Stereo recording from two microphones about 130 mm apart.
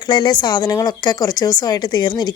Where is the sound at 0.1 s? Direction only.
35° left (ahead or behind).